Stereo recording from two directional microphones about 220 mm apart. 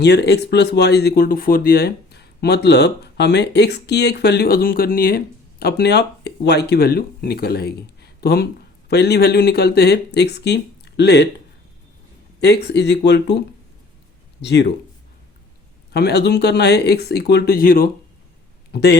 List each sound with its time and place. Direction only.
0.0 s speech: 50° left (ahead or behind)
12.4 s speech: 50° left (ahead or behind)
14.4 s speech: 50° left (ahead or behind)
15.9 s speech: 45° left (ahead or behind)